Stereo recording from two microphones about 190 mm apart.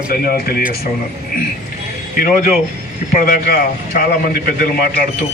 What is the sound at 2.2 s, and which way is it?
Speech, 45° left (ahead or behind).